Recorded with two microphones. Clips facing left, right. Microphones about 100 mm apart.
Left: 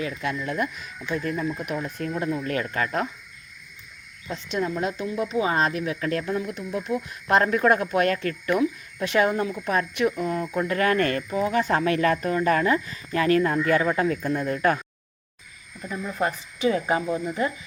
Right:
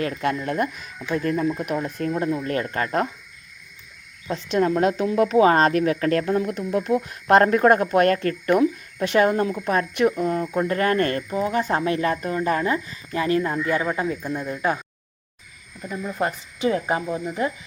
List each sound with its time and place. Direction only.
0.0 s speech: 55° right (ahead or behind)
4.4 s speech: 60° right (ahead or behind); by 14.8 s 15° right (ahead or behind)
16.1 s speech: 25° right (ahead or behind)
16.8 s speech: 10° right (ahead or behind)